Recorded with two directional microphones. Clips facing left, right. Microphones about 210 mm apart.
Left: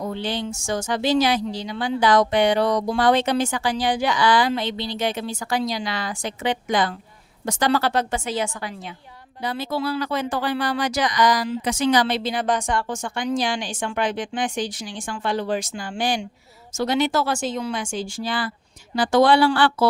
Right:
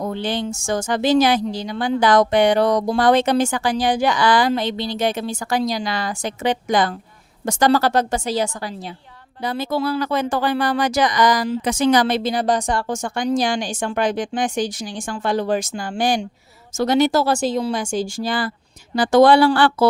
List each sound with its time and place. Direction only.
0.0 s speech: 50° right (ahead or behind)